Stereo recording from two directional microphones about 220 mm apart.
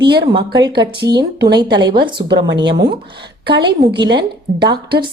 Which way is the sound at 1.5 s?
20° right (ahead or behind).